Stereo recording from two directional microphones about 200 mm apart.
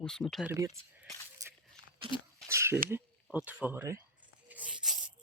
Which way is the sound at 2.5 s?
15° right (ahead or behind).